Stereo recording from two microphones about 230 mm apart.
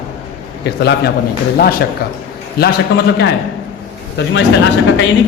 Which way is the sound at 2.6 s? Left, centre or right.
Left.